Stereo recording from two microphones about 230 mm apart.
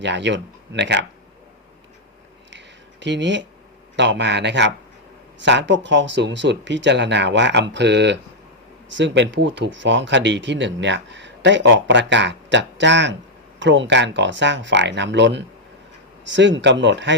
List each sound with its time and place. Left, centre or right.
0.0 s speech: right
2.5 s a sound: right
3.9 s speech: right